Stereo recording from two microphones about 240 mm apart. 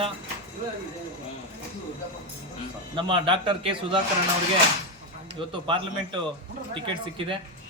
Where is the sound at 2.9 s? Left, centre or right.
Right.